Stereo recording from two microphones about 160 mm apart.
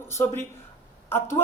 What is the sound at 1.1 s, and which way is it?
Speech, 15° left (ahead or behind).